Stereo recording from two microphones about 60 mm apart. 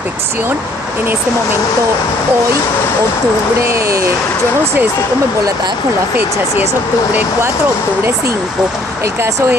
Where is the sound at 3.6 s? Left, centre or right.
Right.